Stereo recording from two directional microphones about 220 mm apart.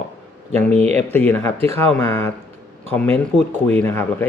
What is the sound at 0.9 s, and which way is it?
Speech, 10° left (ahead or behind).